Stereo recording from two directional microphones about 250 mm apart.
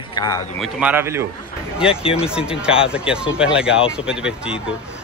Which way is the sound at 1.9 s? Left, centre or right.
Left.